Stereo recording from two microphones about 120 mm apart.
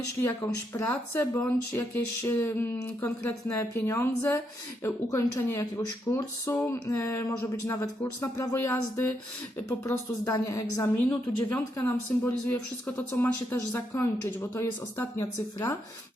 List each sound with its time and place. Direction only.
0.2 s speech: 20° left (ahead or behind)
10.2 s speech: 30° left (ahead or behind)
10.9 s speech: 15° left (ahead or behind)